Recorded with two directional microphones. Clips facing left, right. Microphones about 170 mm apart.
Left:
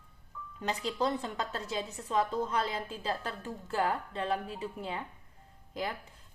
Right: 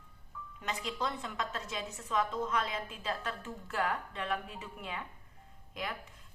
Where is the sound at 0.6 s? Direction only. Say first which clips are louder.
Left 5 dB; 35° left (ahead or behind).